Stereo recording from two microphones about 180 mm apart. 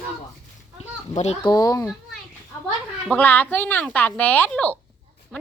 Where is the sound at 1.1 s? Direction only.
40° left (ahead or behind).